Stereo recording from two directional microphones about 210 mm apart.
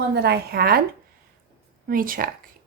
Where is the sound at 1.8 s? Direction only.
40° right (ahead or behind).